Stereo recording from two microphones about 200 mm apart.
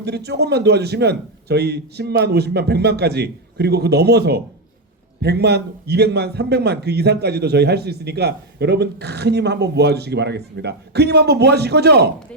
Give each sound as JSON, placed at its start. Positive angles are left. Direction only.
{"t": 0.0, "sound": "a man's voice", "side_deg": -55}